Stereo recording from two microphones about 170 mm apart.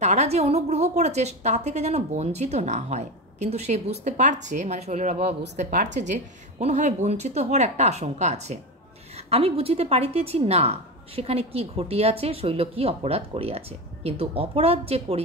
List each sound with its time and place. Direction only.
0.0 s a woman's voice: 40° right (ahead or behind)
5.6 s a woman's voice: 50° right (ahead or behind)